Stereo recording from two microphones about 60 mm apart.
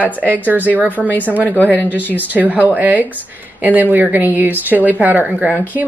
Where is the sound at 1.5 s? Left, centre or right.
Left.